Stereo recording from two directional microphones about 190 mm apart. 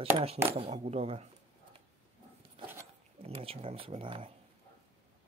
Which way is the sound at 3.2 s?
30° right (ahead or behind).